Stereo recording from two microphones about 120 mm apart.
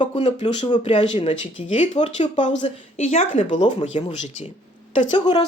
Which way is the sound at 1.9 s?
70° left (ahead or behind).